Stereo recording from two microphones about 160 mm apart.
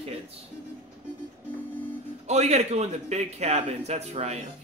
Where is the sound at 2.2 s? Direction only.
45° right (ahead or behind).